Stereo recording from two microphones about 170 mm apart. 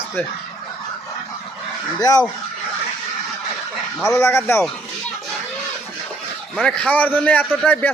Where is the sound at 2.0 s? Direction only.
20° left (ahead or behind).